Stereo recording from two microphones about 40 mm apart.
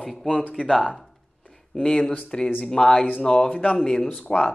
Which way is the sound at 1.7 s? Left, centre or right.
Centre.